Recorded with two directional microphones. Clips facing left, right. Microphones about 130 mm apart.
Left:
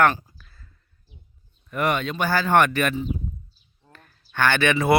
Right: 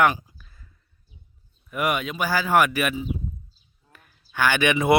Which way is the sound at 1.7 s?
10° right (ahead or behind).